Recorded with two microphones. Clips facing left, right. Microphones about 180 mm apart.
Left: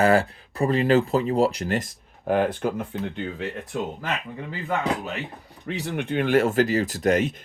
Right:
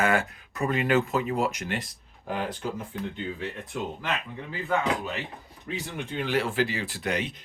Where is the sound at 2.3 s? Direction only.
55° left (ahead or behind).